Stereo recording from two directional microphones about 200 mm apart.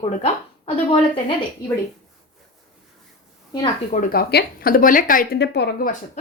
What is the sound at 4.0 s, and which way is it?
A woman's voice, 50° left (ahead or behind).